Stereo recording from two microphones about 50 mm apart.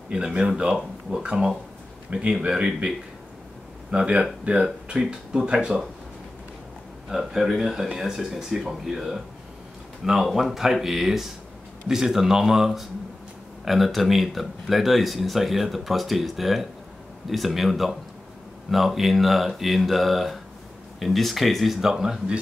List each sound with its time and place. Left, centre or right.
0.1 s speech: right
3.9 s speech: right
7.1 s speech: centre
10.2 s speech: centre